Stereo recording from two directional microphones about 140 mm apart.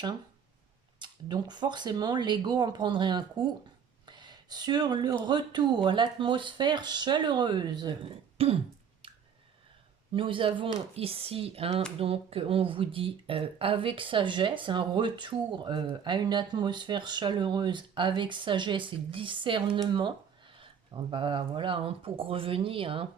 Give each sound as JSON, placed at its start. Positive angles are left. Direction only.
{"t": 0.9, "sound": "speech", "side_deg": -30}
{"t": 4.0, "sound": "a sound", "side_deg": -30}
{"t": 5.2, "sound": "speech", "side_deg": -30}
{"t": 8.4, "sound": "speech", "side_deg": -45}
{"t": 10.1, "sound": "speech", "side_deg": -40}